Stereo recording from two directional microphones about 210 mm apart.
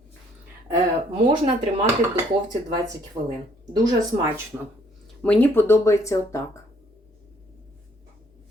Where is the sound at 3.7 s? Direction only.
20° right (ahead or behind).